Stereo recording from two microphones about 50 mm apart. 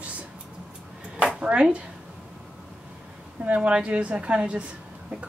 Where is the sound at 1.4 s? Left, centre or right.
Right.